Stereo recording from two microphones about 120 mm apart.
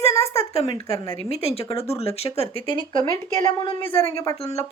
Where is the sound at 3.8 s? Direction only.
20° left (ahead or behind).